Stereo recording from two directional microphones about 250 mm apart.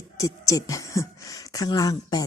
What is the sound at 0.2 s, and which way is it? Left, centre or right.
Speech, centre.